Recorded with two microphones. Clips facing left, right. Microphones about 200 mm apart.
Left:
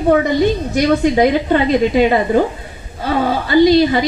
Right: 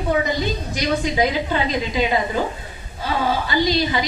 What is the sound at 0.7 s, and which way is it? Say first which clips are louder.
A woman's voice: left 8 dB; 55° left (ahead or behind).